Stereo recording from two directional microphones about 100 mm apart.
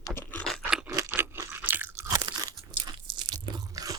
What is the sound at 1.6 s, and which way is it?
Crunch, 20° right (ahead or behind).